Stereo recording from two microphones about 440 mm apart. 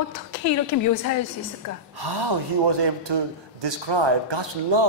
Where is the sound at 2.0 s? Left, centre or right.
Right.